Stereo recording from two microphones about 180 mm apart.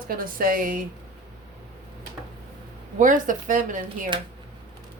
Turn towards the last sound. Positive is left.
turn(degrees=-45)  # may be behind; listen again after turning